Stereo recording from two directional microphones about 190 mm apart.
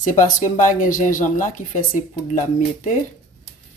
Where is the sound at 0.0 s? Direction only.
45° left (ahead or behind).